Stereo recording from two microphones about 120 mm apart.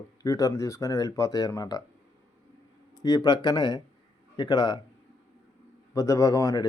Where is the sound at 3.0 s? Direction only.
35° left (ahead or behind).